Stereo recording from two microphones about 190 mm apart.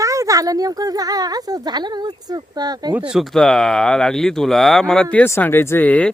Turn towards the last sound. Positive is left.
turn(degrees=10)  # may be behind; listen again after turning